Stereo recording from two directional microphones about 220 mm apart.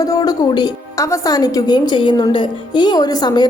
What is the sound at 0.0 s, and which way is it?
A woman's voice, 15° left (ahead or behind).